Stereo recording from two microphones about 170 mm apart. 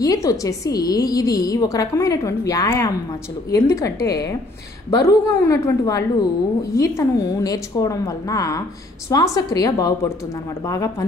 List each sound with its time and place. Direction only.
0.0 s a woman's voice: 20° left (ahead or behind)